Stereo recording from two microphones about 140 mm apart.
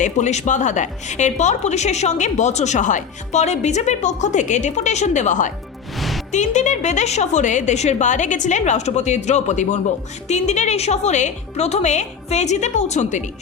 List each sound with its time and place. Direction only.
0.0 s a woman's voice: 55° left (ahead or behind)
6.0 s music: centre (ahead or behind)
6.3 s a woman's voice: 55° left (ahead or behind)